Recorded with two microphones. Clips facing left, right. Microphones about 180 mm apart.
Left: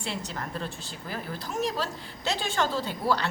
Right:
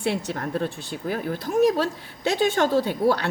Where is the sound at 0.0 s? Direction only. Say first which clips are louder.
Right 8 dB; 60° right (ahead or behind).